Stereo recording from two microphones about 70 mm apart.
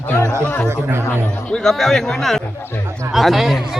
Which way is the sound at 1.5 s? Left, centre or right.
Centre.